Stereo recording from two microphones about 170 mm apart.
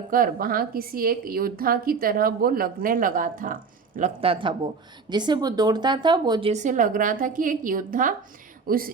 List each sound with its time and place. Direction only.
0.1 s a woman's voice: 55° right (ahead or behind)
4.2 s speech: 30° right (ahead or behind)
6.5 s a woman's voice: 45° right (ahead or behind)